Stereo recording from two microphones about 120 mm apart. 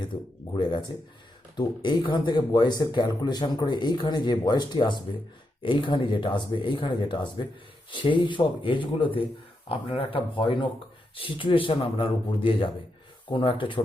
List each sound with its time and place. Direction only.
0.5 s speech: 40° left (ahead or behind)